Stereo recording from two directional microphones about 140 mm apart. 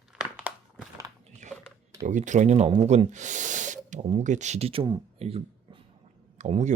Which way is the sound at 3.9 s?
50° right (ahead or behind).